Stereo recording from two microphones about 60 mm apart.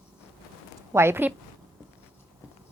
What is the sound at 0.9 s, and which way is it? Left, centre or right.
Speech, right.